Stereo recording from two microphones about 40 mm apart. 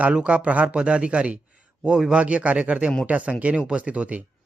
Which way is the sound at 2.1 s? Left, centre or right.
Right.